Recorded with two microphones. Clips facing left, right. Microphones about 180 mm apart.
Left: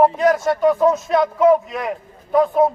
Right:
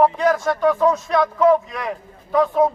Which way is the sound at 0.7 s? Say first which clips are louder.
Left 1 dB; 20° left (ahead or behind).